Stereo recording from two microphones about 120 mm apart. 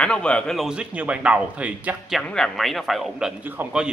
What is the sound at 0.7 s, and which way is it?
Speech, 10° right (ahead or behind).